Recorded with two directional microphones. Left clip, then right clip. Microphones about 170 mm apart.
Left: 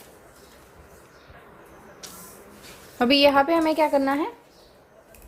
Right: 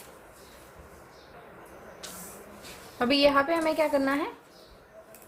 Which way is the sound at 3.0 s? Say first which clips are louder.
Left 5 dB; 45° left (ahead or behind).